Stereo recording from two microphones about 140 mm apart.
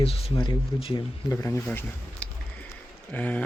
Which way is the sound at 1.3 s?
20° left (ahead or behind).